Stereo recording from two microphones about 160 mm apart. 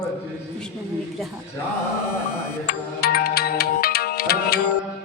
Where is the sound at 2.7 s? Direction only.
75° left (ahead or behind).